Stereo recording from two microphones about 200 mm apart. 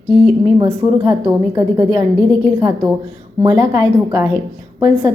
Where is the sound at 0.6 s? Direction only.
15° right (ahead or behind).